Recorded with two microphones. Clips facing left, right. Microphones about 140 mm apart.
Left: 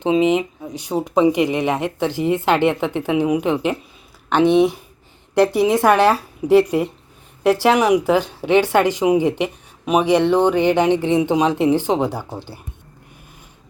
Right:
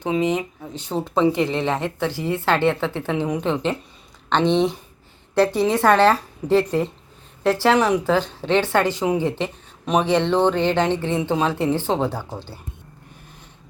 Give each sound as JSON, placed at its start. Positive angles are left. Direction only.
{"t": 0.0, "sound": "speech", "side_deg": 20}